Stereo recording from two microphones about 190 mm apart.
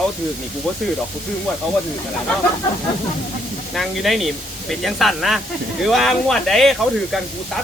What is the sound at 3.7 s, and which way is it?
Speech, centre (ahead or behind).